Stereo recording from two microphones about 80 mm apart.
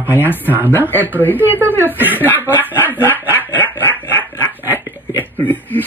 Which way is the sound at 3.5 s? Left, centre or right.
Left.